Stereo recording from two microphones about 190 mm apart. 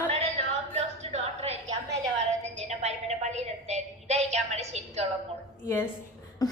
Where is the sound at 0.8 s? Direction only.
35° right (ahead or behind).